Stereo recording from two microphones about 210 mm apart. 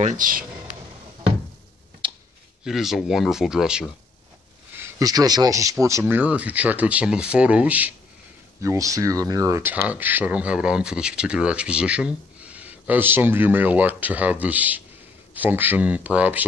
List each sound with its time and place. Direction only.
0.0 s speech: 35° right (ahead or behind)
2.0 s clicking: 25° right (ahead or behind)
2.6 s speech: centre (ahead or behind)
4.7 s speech: 15° right (ahead or behind)